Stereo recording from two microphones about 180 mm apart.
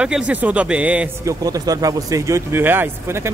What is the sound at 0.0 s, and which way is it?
Speech, 5° right (ahead or behind).